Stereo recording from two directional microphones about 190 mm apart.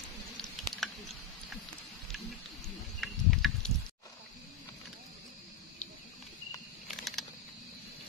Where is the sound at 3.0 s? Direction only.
Centre (ahead or behind).